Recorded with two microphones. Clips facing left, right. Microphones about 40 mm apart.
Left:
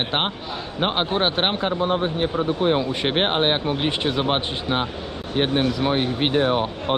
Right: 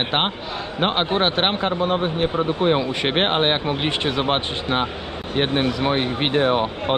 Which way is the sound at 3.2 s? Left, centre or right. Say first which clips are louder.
Right 1 dB; right.